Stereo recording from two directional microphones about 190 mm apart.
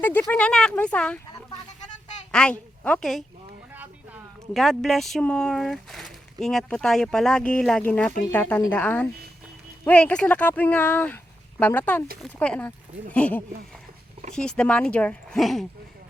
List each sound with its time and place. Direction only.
0.0 s speech: 10° left (ahead or behind)
2.3 s a woman's voice: 5° left (ahead or behind)